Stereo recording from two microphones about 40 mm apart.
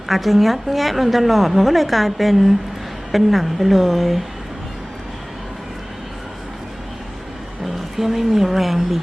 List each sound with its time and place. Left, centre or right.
0.1 s a woman's voice: centre
7.9 s a woman's voice: centre